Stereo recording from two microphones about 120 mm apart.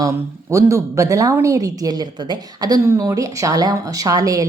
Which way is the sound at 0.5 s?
25° right (ahead or behind).